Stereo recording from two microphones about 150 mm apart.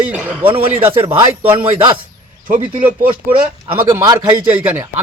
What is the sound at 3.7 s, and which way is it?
Speech, 25° right (ahead or behind).